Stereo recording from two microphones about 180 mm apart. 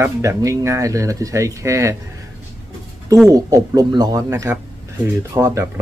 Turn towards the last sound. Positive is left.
turn(degrees=-15)  # may be behind; listen again after turning